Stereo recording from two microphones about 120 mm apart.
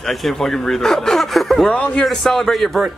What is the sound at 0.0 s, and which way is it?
A man's voice, centre (ahead or behind).